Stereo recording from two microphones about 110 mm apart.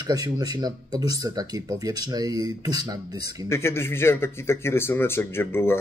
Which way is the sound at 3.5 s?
25° left (ahead or behind).